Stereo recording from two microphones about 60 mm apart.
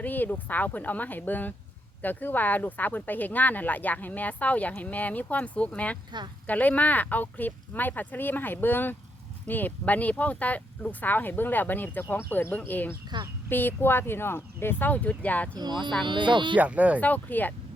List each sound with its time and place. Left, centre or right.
0.0 s speech: left
16.6 s speech: right
17.0 s speech: left